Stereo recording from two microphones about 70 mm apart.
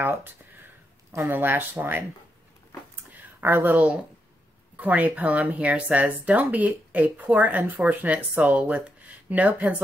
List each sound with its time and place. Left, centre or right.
0.0 s speech: right
1.1 s speech: right
1.4 s speech: right
3.1 s a sound: right
4.7 s speech: right